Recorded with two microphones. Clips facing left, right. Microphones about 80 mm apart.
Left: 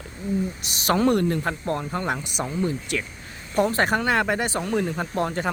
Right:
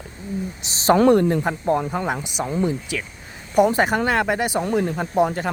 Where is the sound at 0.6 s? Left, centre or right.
Right.